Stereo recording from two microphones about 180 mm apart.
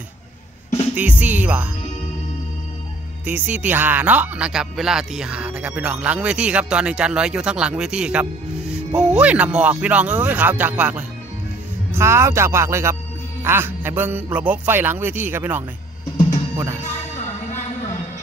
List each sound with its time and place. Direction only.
0.9 s speech: 10° right (ahead or behind)
3.3 s speech: 10° right (ahead or behind)